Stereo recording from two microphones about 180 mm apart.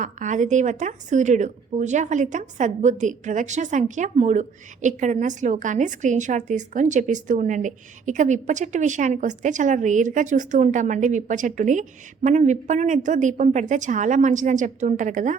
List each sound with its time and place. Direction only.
0.0 s a woman's voice: 45° right (ahead or behind)